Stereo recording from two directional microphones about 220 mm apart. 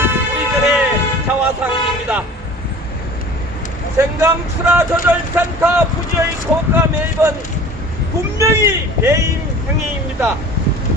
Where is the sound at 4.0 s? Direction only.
10° right (ahead or behind).